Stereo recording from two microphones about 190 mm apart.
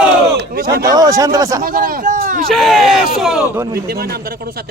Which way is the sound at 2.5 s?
Centre (ahead or behind).